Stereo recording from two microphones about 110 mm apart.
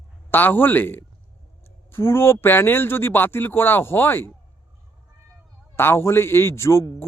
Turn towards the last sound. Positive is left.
turn(degrees=25)  # may be behind; listen again after turning